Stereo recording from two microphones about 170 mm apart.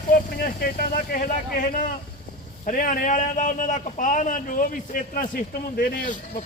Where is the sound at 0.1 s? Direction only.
60° left (ahead or behind).